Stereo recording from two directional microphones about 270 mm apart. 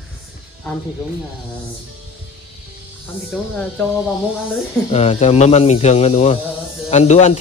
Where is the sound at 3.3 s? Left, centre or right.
Centre.